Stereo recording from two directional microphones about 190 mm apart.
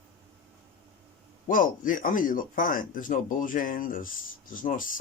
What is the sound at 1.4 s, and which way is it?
A man's voice, 45° left (ahead or behind).